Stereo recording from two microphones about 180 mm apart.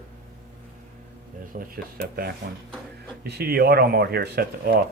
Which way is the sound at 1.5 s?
50° right (ahead or behind).